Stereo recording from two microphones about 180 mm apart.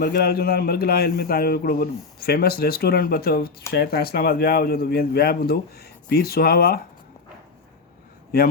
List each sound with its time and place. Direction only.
0.0 s a man's voice: 60° left (ahead or behind)